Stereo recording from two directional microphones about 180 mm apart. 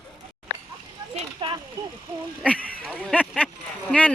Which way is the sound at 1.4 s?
25° right (ahead or behind).